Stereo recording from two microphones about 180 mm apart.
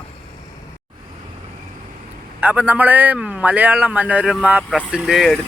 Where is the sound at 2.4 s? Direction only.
10° right (ahead or behind).